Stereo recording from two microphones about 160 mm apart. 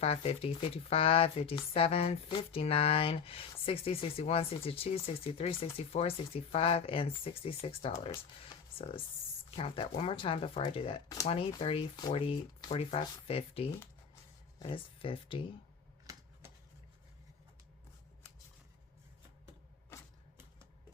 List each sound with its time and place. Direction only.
0.0 s speech: 40° left (ahead or behind)